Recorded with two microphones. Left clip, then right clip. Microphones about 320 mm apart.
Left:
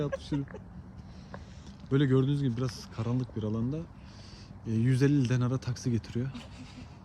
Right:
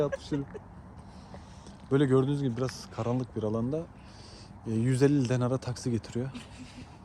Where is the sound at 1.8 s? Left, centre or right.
Centre.